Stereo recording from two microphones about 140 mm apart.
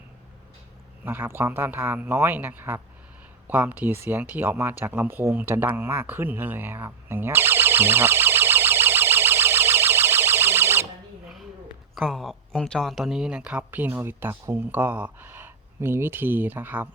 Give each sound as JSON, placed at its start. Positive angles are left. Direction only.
{"t": 1.0, "sound": "speech", "side_deg": -15}
{"t": 4.8, "sound": "a sound", "side_deg": -15}
{"t": 11.9, "sound": "speech", "side_deg": 0}